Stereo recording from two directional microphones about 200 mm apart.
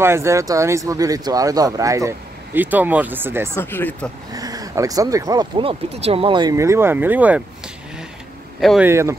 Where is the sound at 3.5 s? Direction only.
10° left (ahead or behind).